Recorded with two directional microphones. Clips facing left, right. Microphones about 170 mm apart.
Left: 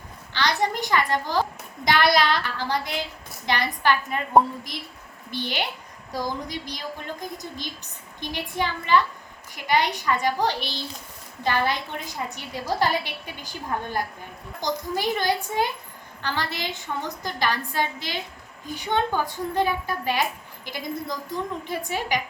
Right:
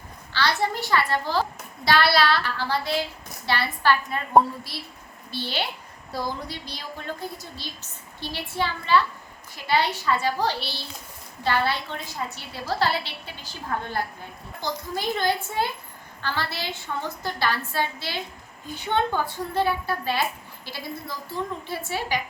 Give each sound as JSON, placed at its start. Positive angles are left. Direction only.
{"t": 0.3, "sound": "a woman's voice", "side_deg": 15}